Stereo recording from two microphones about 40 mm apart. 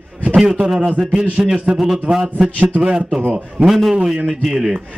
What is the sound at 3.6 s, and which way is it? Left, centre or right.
A man's voice, centre.